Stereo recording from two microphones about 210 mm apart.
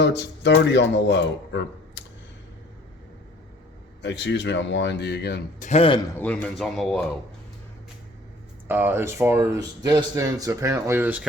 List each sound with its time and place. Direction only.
0.0 s speech: 55° left (ahead or behind)
4.0 s speech: 55° left (ahead or behind)
5.6 s a man's voice: 30° left (ahead or behind)
6.1 s speech: 5° left (ahead or behind)
8.6 s speech: 10° right (ahead or behind)